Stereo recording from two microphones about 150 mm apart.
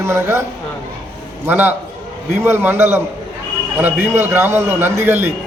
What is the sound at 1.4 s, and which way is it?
Speech, 15° right (ahead or behind).